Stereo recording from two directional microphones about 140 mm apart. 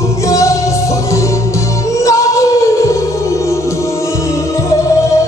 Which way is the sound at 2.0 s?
20° left (ahead or behind).